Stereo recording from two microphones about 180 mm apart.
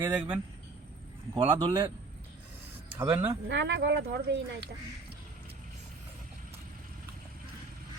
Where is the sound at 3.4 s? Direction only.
75° right (ahead or behind).